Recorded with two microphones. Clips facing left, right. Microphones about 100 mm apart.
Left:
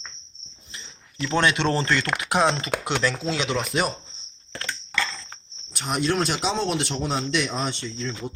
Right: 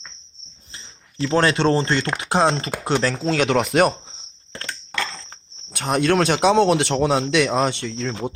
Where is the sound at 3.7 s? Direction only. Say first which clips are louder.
Right 8 dB; 65° right (ahead or behind).